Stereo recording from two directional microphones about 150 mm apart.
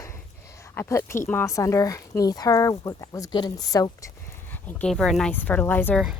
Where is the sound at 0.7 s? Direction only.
15° left (ahead or behind).